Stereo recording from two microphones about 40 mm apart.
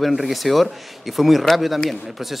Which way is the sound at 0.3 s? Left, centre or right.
Centre.